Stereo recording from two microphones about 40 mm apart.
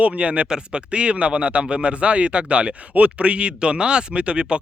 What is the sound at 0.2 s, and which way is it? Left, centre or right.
Speech, right.